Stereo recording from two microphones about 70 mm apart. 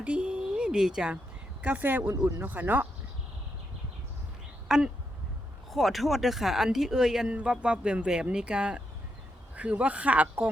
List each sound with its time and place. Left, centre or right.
0.0 s a sound: centre
1.6 s speech: right
4.7 s speech: centre; by 10.5 s right